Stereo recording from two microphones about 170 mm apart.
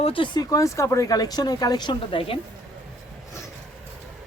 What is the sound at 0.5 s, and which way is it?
Speech, 20° left (ahead or behind).